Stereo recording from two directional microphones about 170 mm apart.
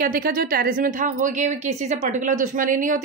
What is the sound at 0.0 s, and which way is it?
A woman's voice, 55° right (ahead or behind).